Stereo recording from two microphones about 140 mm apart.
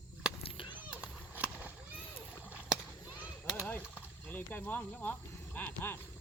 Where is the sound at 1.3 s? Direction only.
10° right (ahead or behind).